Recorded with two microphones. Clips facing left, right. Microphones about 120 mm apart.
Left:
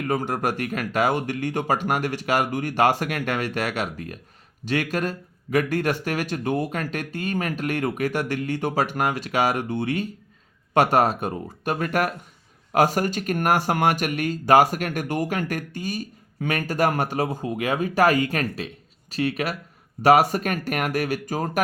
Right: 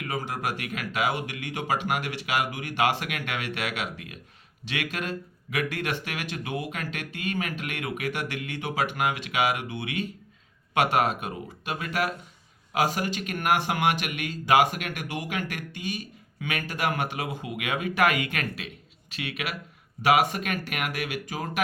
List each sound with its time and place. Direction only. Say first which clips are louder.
0.0 s speech: left 7 dB; 50° left (ahead or behind)